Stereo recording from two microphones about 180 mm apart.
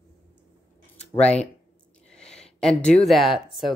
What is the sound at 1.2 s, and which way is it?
Speech, 35° left (ahead or behind).